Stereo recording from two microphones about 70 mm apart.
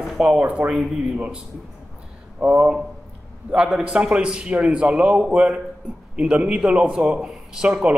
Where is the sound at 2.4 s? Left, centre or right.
Right.